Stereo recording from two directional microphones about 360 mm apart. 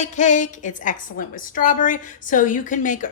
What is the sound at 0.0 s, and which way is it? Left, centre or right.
A woman's voice, centre.